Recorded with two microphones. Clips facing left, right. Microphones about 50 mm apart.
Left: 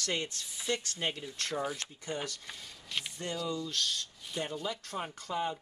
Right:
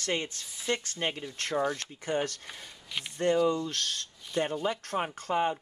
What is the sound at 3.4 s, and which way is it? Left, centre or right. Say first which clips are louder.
Speech: right 6 dB; right.